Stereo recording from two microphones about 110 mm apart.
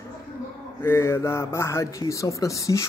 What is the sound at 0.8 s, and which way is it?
A man's voice, 25° left (ahead or behind).